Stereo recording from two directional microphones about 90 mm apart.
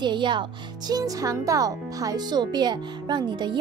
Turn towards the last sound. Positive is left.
turn(degrees=-55)  # may be behind; listen again after turning